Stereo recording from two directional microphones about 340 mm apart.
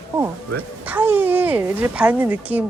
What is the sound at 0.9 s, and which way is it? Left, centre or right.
Speech, centre.